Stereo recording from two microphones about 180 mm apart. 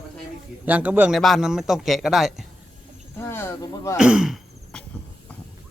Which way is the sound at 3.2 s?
15° left (ahead or behind).